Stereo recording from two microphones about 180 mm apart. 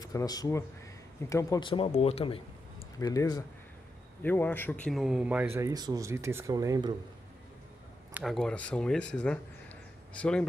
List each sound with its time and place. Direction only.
0.0 s speech: 20° left (ahead or behind)
3.0 s a man's voice: 20° left (ahead or behind); by 6.9 s 20° right (ahead or behind)
8.1 s speech: centre (ahead or behind)